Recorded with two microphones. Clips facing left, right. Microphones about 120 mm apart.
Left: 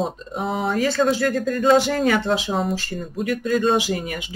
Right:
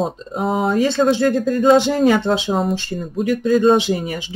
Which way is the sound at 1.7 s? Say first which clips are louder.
Right 4 dB; 25° right (ahead or behind).